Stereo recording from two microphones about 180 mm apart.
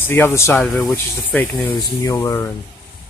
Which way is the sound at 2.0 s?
20° left (ahead or behind).